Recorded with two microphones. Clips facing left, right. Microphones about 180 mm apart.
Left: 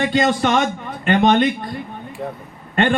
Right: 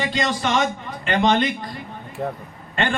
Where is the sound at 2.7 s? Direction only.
55° left (ahead or behind).